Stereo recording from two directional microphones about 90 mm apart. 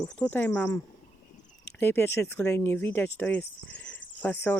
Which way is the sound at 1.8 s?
25° left (ahead or behind).